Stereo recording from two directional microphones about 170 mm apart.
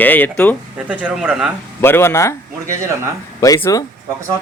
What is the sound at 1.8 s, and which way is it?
Speech, 15° left (ahead or behind).